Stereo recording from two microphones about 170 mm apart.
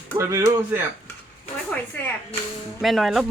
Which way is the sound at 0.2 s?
15° right (ahead or behind).